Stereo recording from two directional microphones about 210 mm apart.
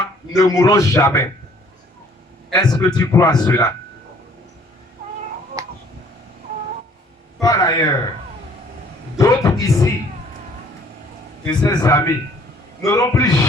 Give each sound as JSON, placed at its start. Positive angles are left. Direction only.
{"t": 0.3, "sound": "a man's voice", "side_deg": 15}
{"t": 2.5, "sound": "a man's voice", "side_deg": 20}
{"t": 5.6, "sound": "cat", "side_deg": -15}
{"t": 7.3, "sound": "a man's voice", "side_deg": 15}
{"t": 9.1, "sound": "speech", "side_deg": 15}
{"t": 11.4, "sound": "a man's voice", "side_deg": 20}